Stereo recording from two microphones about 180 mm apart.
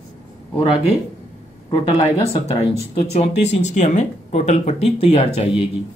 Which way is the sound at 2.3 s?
35° left (ahead or behind).